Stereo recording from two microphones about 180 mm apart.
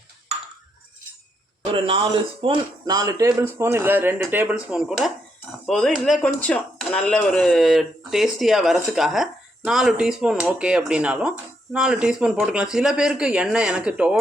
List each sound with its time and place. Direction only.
1.7 s speech: 30° right (ahead or behind); by 14.2 s 5° right (ahead or behind)